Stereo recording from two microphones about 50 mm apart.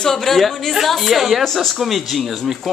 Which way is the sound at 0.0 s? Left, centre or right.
Centre.